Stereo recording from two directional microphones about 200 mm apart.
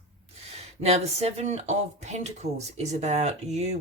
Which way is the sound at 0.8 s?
30° right (ahead or behind).